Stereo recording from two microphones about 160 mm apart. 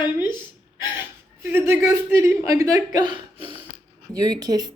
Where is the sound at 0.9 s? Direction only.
15° right (ahead or behind).